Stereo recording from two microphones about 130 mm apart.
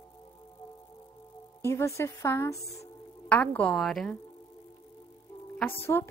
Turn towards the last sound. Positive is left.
turn(degrees=15)  # may be behind; listen again after turning